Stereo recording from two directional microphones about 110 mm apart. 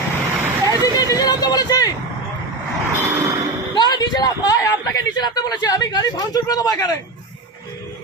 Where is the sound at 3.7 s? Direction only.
40° left (ahead or behind).